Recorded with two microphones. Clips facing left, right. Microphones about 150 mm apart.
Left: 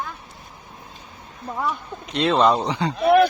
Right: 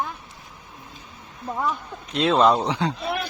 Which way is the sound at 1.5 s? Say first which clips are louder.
Left 1 dB; centre (ahead or behind).